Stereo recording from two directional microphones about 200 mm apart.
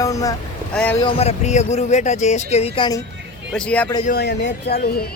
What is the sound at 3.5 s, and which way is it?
Speech, 5° left (ahead or behind).